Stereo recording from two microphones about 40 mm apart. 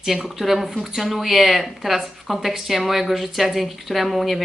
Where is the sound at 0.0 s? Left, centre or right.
Centre.